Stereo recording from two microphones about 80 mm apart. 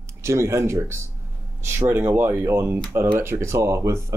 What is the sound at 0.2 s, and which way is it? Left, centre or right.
Speech, right.